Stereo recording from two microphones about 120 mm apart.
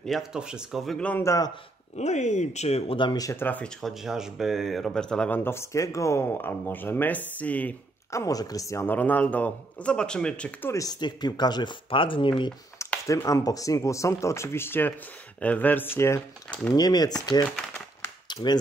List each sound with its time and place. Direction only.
0.0 s speech: centre (ahead or behind)
1.2 s speech: 30° left (ahead or behind)
2.0 s speech: 75° left (ahead or behind)
3.0 s speech: 35° left (ahead or behind)
3.3 s speech: 15° left (ahead or behind)
3.8 s speech: centre (ahead or behind)
5.4 s speech: 20° left (ahead or behind)
8.1 s speech: 25° left (ahead or behind); by 10.7 s 10° left (ahead or behind)
10.7 s speech: 30° left (ahead or behind)
12.7 s speech: 25° left (ahead or behind)
16.7 s speech: 35° left (ahead or behind)
18.0 s a sound: 40° left (ahead or behind)